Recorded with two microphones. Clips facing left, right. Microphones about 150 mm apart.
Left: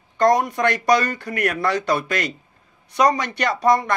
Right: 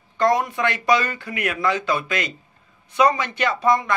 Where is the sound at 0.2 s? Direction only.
40° left (ahead or behind).